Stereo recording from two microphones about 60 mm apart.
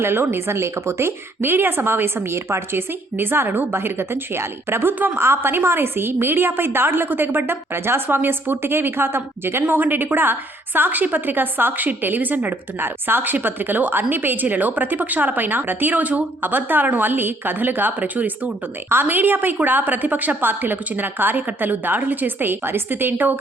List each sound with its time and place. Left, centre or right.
0.0 s a woman's voice: right